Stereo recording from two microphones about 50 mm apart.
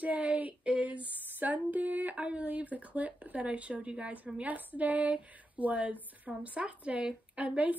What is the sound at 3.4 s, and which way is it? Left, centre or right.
Speech, right.